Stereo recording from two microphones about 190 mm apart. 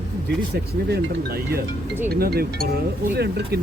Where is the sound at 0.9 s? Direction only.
55° right (ahead or behind).